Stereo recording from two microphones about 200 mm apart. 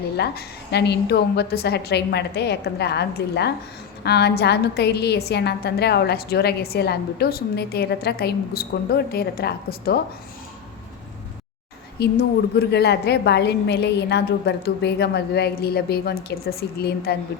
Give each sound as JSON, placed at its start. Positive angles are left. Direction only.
{"t": 0.2, "sound": "a woman's voice", "side_deg": 55}
{"t": 11.9, "sound": "a woman's voice", "side_deg": 55}